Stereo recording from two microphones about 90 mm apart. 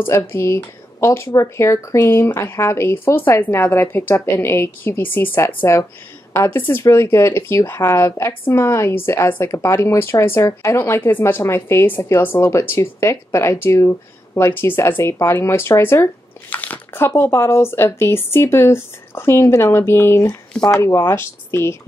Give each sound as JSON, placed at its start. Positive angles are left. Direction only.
{"t": 0.0, "sound": "speech", "side_deg": 30}
{"t": 6.3, "sound": "speech", "side_deg": 30}